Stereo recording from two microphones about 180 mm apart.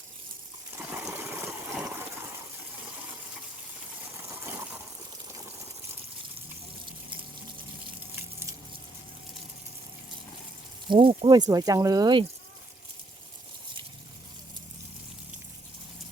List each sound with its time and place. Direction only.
0.9 s water: 10° right (ahead or behind)
4.2 s gush: 15° right (ahead or behind)
8.1 s a sound: 15° right (ahead or behind)
10.8 s speech: 30° right (ahead or behind)